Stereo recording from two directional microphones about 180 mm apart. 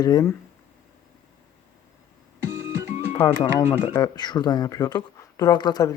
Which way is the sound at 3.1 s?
20° left (ahead or behind).